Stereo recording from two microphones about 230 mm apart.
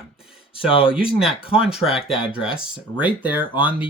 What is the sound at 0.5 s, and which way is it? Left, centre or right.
Speech, left.